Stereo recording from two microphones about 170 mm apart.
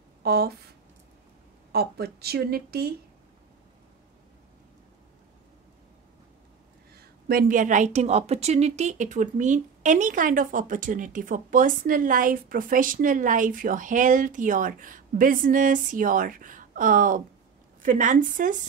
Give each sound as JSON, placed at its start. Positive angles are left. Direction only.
{"t": 0.2, "sound": "speech", "side_deg": -65}
{"t": 1.7, "sound": "a woman's voice", "side_deg": -65}
{"t": 7.0, "sound": "a woman's voice", "side_deg": -60}